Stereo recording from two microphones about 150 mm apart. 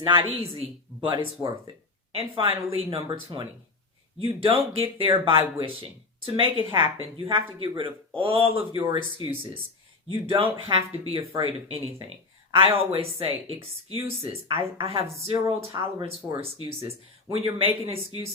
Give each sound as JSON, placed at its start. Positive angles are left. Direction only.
{"t": 0.0, "sound": "speech", "side_deg": -35}
{"t": 10.2, "sound": "speech", "side_deg": -35}